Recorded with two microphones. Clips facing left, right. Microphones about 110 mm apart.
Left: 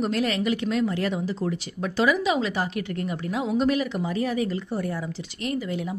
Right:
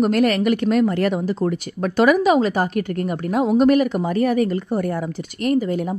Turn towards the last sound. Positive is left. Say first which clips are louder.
# right 8 dB
turn(degrees=-45)  # may be behind; listen again after turning